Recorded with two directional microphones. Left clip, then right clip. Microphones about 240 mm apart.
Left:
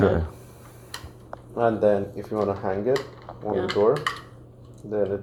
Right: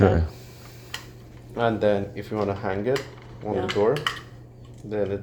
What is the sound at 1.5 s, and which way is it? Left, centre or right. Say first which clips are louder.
Speech: left 1 dB; right.